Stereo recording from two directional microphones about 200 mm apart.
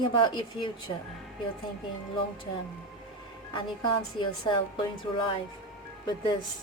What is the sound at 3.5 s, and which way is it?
Speech, 25° left (ahead or behind).